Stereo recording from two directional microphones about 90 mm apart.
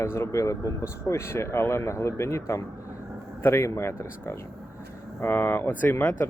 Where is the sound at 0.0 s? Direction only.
30° left (ahead or behind).